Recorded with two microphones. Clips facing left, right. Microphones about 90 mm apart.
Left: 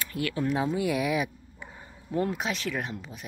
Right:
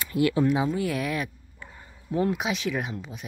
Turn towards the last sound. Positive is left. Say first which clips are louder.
# right 3 dB
turn(degrees=0)  # may be behind; listen again after turning